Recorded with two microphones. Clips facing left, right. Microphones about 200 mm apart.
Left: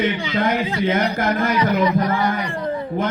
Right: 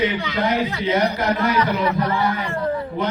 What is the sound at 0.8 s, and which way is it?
Speech, 50° left (ahead or behind).